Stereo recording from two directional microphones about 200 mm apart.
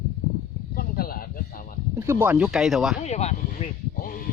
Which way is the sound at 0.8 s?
45° left (ahead or behind).